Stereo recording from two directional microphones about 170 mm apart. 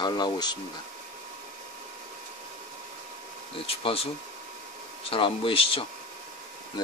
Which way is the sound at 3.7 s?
35° left (ahead or behind).